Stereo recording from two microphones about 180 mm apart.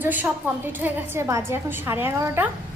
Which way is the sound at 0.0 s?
10° right (ahead or behind).